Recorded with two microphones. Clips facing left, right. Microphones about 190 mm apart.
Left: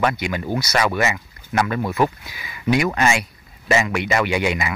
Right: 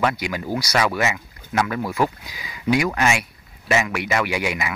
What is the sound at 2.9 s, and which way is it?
Speech, 5° right (ahead or behind).